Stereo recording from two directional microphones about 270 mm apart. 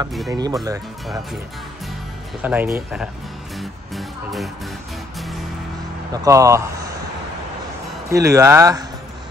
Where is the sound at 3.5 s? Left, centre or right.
Centre.